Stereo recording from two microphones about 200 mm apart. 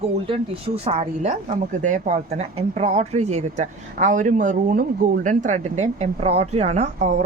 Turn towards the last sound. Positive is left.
turn(degrees=-35)  # may be behind; listen again after turning